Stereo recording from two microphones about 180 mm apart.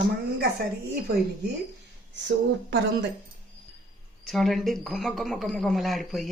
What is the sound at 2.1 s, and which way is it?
Speech, 80° right.